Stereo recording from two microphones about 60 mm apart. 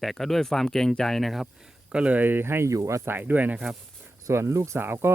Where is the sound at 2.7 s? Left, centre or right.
Right.